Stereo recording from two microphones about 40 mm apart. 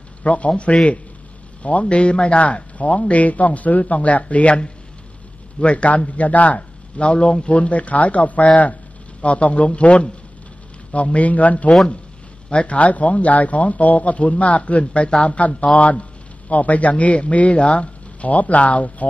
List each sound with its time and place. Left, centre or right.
0.2 s a man's voice: left